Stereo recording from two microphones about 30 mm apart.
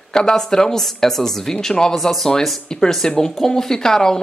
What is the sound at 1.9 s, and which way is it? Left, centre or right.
Speech, centre.